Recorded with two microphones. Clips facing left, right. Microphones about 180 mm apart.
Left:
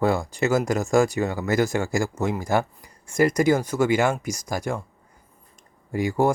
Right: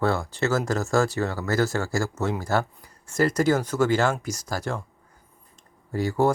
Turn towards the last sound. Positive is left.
turn(degrees=15)  # may be behind; listen again after turning